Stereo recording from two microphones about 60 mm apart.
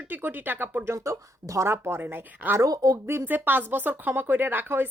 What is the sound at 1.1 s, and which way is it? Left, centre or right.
Speech, right.